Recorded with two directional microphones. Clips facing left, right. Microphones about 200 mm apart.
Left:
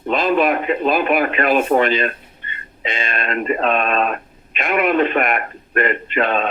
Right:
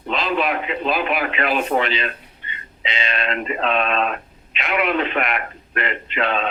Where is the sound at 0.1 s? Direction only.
50° left (ahead or behind).